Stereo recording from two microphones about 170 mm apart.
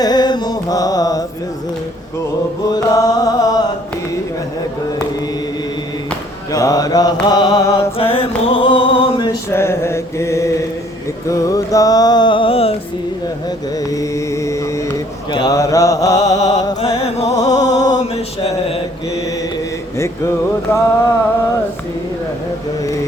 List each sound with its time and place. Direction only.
0.0 s mantra: 25° left (ahead or behind)
2.6 s music: 20° left (ahead or behind)
6.5 s mantra: 20° left (ahead or behind)
7.3 s music: 25° left (ahead or behind)
9.5 s mantra: 15° left (ahead or behind); by 12.7 s 35° left (ahead or behind)
13.9 s mantra: 20° left (ahead or behind)
16.8 s music: 35° left (ahead or behind)
17.3 s music: 20° left (ahead or behind)
20.0 s mantra: 15° left (ahead or behind)